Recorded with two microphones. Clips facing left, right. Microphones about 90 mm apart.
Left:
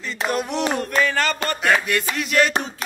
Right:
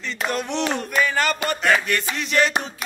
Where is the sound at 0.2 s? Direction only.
5° left (ahead or behind).